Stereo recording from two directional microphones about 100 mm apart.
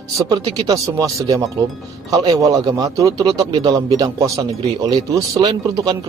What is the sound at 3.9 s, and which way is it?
Speech, 35° right (ahead or behind).